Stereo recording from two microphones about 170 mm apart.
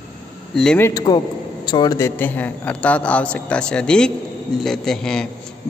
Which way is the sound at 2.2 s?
10° left (ahead or behind).